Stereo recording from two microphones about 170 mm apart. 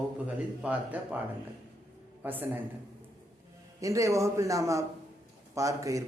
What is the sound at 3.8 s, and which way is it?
A man's voice, 20° right (ahead or behind).